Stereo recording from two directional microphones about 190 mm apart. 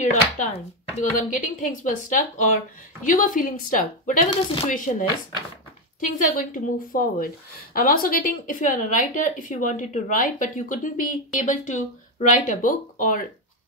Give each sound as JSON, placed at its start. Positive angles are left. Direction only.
{"t": 0.0, "sound": "speech", "side_deg": 35}
{"t": 5.9, "sound": "speech", "side_deg": 45}